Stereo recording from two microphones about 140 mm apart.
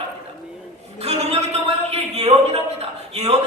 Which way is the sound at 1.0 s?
50° right (ahead or behind).